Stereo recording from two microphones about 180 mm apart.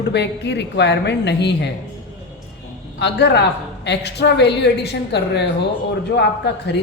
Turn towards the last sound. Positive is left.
turn(degrees=70)  # may be behind; listen again after turning